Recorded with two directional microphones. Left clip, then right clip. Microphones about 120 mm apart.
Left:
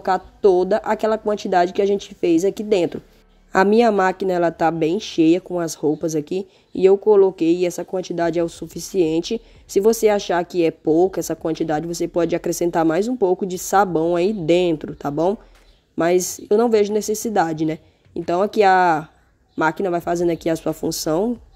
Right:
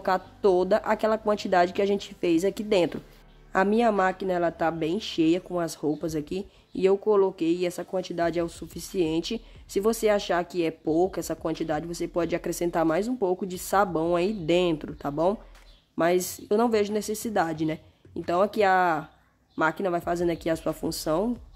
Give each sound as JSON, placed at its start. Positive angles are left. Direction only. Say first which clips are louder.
{"t": 0.0, "sound": "a woman's voice", "louder": "left 7 dB", "side_deg": 15}
{"t": 3.5, "sound": "a woman's voice", "louder": "left 8 dB", "side_deg": 45}